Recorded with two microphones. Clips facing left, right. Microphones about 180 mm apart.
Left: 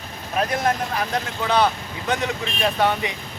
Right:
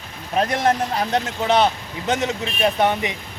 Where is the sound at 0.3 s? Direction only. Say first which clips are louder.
Right 3 dB; 30° right (ahead or behind).